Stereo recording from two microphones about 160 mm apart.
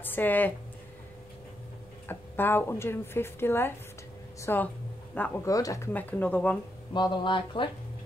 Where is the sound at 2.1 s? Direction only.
15° left (ahead or behind).